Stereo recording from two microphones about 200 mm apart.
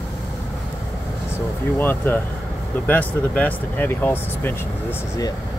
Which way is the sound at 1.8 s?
10° left (ahead or behind).